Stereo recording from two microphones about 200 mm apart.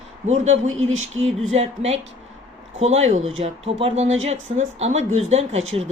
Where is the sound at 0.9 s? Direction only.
85° right.